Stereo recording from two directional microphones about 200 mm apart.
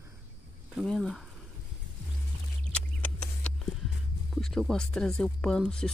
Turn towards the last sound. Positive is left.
turn(degrees=5)  # may be behind; listen again after turning